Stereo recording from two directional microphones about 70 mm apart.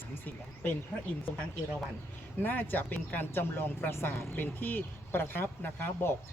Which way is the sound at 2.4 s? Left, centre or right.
Left.